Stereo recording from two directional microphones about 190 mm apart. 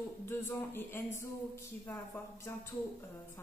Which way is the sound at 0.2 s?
10° left (ahead or behind).